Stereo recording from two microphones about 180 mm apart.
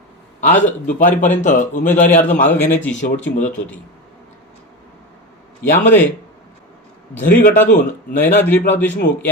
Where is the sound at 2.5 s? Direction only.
10° left (ahead or behind).